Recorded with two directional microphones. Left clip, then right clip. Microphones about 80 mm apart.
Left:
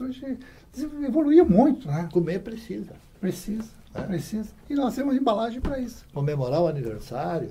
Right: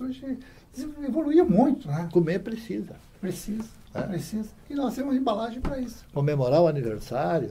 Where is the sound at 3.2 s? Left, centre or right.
Left.